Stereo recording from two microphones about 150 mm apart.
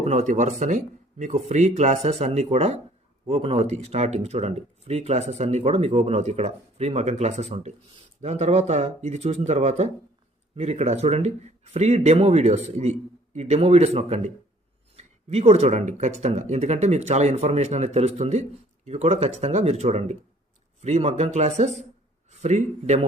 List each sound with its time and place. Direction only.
0.0 s speech: 50° right (ahead or behind)